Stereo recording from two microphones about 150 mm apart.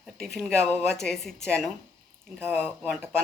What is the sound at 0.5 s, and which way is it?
Speech, 15° right (ahead or behind).